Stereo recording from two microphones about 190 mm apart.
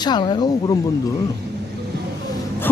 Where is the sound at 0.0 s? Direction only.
20° left (ahead or behind).